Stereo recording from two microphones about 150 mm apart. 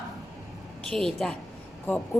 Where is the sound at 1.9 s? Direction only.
10° left (ahead or behind).